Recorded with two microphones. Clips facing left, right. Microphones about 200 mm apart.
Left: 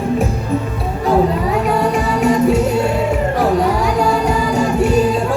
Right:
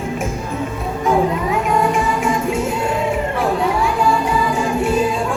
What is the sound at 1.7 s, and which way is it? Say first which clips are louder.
Music: left 1 dB; 40° left (ahead or behind).